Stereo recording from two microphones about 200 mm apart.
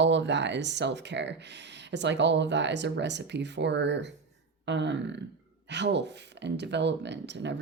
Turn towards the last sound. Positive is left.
turn(degrees=-60)  # may be behind; listen again after turning